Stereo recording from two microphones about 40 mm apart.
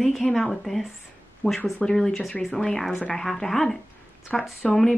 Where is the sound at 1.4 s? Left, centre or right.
Left.